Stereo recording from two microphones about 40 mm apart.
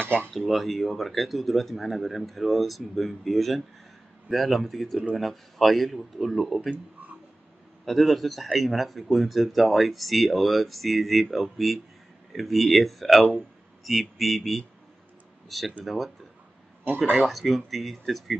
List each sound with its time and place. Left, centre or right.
0.0 s dishes: right
0.5 s speech: centre
7.8 s speech: centre
17.2 s speech: centre